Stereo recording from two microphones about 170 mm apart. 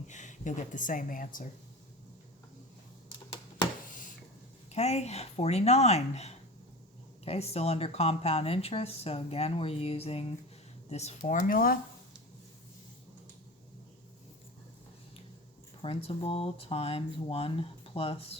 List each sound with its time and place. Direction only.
0.1 s speech: 45° left (ahead or behind)
4.7 s speech: 40° left (ahead or behind); by 11.8 s 60° left (ahead or behind)
15.8 s speech: 35° left (ahead or behind)